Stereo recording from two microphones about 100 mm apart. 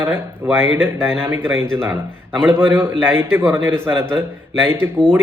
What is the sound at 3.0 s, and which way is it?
Speech, 20° right (ahead or behind).